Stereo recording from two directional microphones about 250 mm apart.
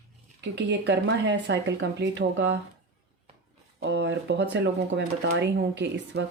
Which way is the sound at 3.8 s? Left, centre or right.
Right.